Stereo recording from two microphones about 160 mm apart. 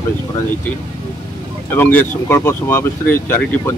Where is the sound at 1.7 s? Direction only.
10° left (ahead or behind).